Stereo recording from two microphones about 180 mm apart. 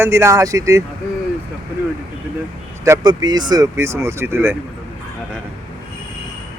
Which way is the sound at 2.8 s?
20° right (ahead or behind).